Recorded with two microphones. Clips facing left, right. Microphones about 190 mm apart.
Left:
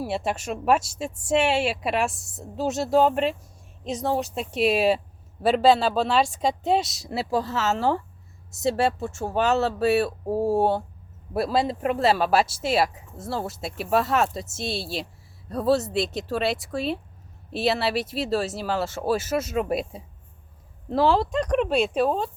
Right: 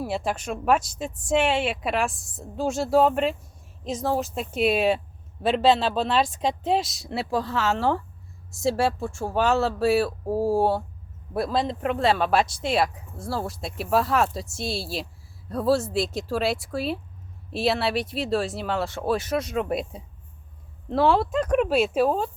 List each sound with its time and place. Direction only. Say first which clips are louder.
0.1 s speech: even; 25° left (ahead or behind)
0.3 s speech: left 1 dB; 5° left (ahead or behind)
10.4 s speech: even; 25° left (ahead or behind)
11.3 s speech: left 2 dB; 5° left (ahead or behind)